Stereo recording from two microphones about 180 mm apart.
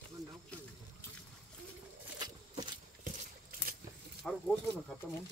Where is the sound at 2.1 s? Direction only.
25° right (ahead or behind).